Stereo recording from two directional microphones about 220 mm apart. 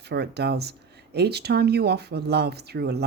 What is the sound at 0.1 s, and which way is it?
Speech, 50° right (ahead or behind).